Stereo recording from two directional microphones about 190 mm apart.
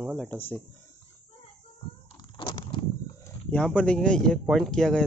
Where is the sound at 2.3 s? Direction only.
25° left (ahead or behind).